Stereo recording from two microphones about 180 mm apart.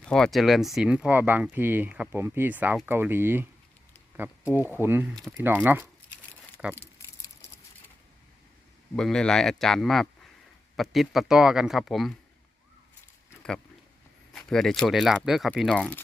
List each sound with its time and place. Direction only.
0.0 s speech: 5° left (ahead or behind)
9.0 s speech: 5° left (ahead or behind)
13.3 s a sound: 5° left (ahead or behind)
14.3 s speech: 5° left (ahead or behind)